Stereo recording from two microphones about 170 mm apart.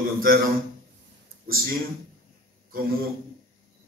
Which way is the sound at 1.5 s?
60° right (ahead or behind).